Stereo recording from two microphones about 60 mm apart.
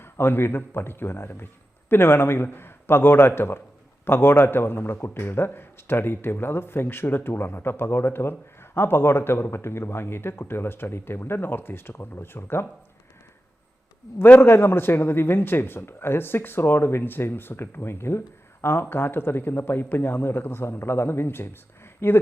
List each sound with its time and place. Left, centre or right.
0.0 s a man's voice: left
14.4 s a man's voice: left